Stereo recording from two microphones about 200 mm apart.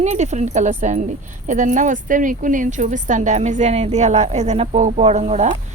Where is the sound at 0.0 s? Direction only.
35° right (ahead or behind).